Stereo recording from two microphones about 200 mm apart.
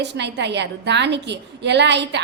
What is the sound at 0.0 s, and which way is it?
A woman's voice, 60° right (ahead or behind).